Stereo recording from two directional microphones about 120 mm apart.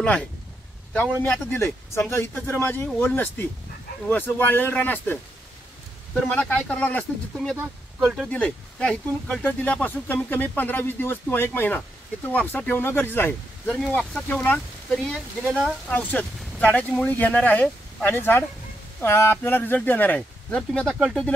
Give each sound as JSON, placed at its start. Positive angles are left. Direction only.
{"t": 0.9, "sound": "a man's voice", "side_deg": 15}
{"t": 8.3, "sound": "speech", "side_deg": 10}
{"t": 15.0, "sound": "speech", "side_deg": 0}
{"t": 15.9, "sound": "speech", "side_deg": 15}